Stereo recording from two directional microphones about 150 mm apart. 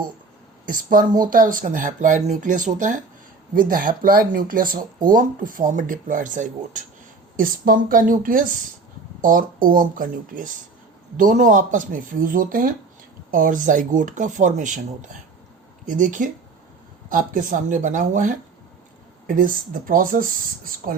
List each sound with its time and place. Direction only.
0.6 s speech: 65° right (ahead or behind)
7.3 s speech: 70° right (ahead or behind)